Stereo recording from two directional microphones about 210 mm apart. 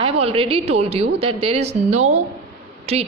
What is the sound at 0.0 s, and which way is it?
A woman's voice, 30° right (ahead or behind).